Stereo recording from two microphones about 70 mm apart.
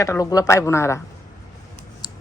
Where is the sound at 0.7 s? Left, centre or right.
Left.